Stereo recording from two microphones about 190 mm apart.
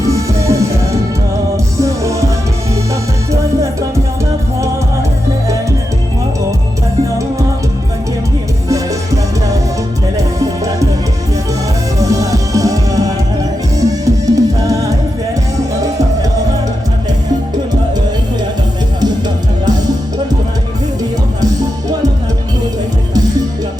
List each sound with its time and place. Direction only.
0.0 s music: 15° right (ahead or behind)
1.8 s music: 15° right (ahead or behind)
10.2 s music: 15° right (ahead or behind)
11.9 s music: 15° right (ahead or behind)